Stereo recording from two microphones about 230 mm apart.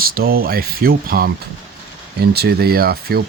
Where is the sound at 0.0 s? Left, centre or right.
Right.